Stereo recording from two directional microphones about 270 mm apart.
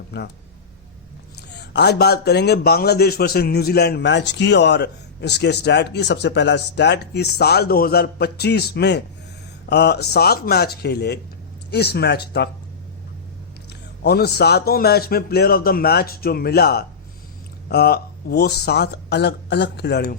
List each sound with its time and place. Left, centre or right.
0.1 s a man's voice: left
1.5 s a man's voice: left
14.0 s a man's voice: left